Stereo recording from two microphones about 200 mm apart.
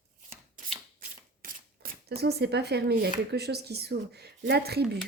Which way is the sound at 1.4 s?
50° right (ahead or behind).